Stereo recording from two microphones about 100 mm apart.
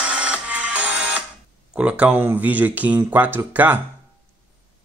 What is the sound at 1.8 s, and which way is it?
Speech, 15° right (ahead or behind).